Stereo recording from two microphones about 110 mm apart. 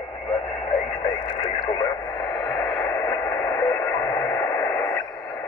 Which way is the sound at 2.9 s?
25° left (ahead or behind).